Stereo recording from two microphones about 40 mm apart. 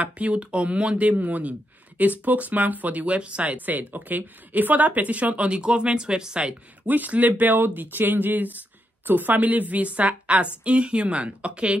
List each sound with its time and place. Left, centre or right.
0.0 s a woman's voice: right
3.2 s a woman's voice: right
3.5 s speech: right
5.6 s speech: right
6.9 s a woman's voice: right